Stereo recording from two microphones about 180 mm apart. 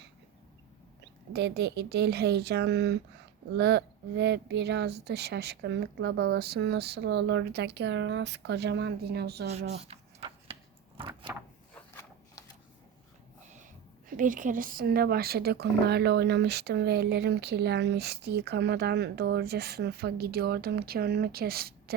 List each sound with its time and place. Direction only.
1.3 s speech: 70° right (ahead or behind)
9.8 s a sound: 35° right (ahead or behind)
14.1 s speech: 45° right (ahead or behind)